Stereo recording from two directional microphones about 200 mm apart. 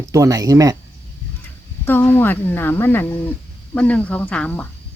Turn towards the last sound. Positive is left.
turn(degrees=5)  # may be behind; listen again after turning